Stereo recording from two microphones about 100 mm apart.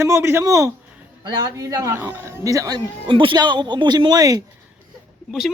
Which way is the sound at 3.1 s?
55° right (ahead or behind).